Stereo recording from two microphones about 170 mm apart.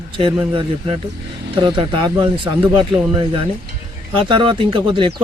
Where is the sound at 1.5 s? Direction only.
30° right (ahead or behind).